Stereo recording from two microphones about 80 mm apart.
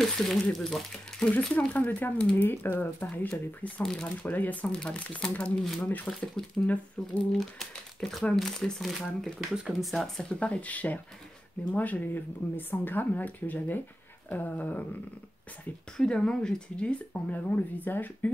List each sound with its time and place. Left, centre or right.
0.0 s speech: centre
1.5 s speech: centre
3.8 s speech: centre
4.2 s speech: centre
5.6 s speech: centre
10.4 s speech: centre
16.0 s speech: centre